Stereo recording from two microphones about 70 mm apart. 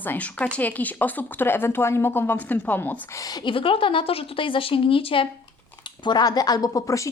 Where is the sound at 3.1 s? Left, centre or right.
Left.